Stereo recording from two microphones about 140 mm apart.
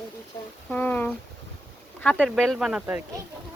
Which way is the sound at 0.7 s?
10° left (ahead or behind).